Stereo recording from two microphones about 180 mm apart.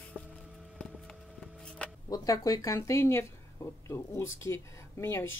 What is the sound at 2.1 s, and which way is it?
Speech, 20° left (ahead or behind).